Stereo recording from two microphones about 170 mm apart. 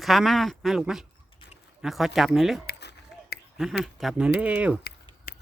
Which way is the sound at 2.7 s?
75° left (ahead or behind).